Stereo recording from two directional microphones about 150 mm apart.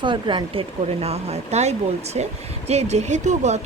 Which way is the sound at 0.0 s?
30° right (ahead or behind).